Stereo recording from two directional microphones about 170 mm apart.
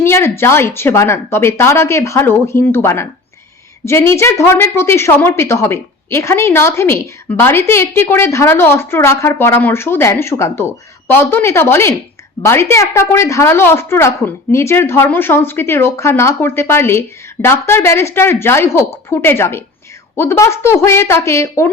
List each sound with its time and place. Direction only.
0.0 s a woman's voice: 15° left (ahead or behind)